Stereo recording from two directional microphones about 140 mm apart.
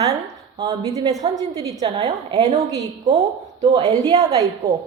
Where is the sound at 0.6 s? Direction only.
25° right (ahead or behind).